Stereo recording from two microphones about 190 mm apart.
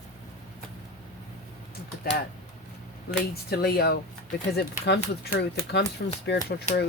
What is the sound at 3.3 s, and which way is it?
Speech, 55° left (ahead or behind).